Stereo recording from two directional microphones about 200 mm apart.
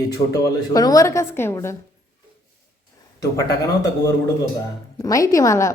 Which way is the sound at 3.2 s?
15° left (ahead or behind).